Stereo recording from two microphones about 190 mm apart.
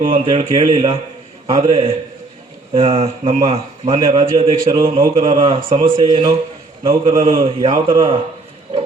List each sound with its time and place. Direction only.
0.1 s a man's voice: 30° right (ahead or behind)